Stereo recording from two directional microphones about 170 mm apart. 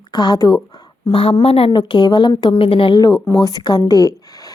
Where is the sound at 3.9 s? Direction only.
20° left (ahead or behind).